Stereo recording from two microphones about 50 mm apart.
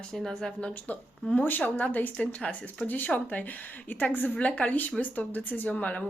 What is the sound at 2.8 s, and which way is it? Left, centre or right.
Speech, left.